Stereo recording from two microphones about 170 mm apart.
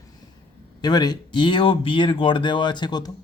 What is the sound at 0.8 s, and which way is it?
Speech, 25° left (ahead or behind).